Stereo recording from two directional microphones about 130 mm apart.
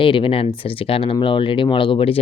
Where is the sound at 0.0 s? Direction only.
40° left (ahead or behind).